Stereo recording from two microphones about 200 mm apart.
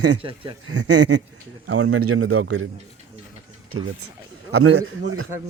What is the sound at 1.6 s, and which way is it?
A man's voice, 90° right.